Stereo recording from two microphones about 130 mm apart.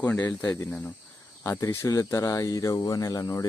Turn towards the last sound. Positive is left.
turn(degrees=25)  # may be behind; listen again after turning